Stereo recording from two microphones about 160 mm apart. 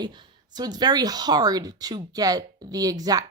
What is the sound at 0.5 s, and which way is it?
Speech, 25° right (ahead or behind).